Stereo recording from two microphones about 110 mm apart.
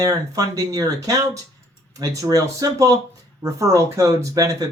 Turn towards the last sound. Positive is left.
turn(degrees=-30)  # may be behind; listen again after turning